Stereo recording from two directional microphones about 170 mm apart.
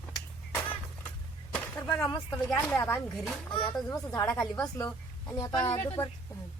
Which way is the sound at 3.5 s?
25° left (ahead or behind).